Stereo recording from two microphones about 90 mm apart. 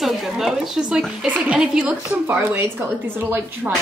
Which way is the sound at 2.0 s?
20° right (ahead or behind).